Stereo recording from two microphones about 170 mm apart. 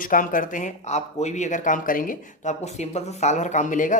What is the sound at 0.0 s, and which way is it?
Speech, 55° left (ahead or behind).